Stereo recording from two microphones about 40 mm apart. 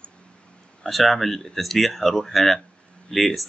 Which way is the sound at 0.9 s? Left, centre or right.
Centre.